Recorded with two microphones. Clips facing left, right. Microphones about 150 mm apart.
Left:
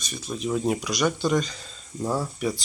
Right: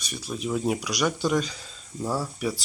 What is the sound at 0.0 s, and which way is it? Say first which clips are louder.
Speech: left 1 dB; 10° right (ahead or behind).